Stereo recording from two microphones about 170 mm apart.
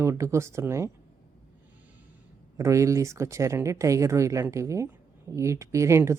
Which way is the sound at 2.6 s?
20° right (ahead or behind).